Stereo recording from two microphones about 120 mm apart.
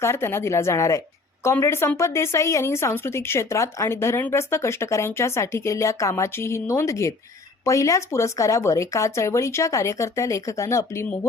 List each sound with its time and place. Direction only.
0.0 s speech: 20° left (ahead or behind)